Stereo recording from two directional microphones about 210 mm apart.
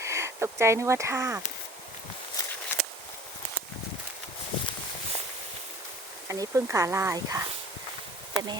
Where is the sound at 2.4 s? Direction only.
20° left (ahead or behind).